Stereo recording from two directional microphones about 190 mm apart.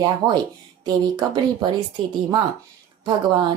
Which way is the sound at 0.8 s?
20° right (ahead or behind).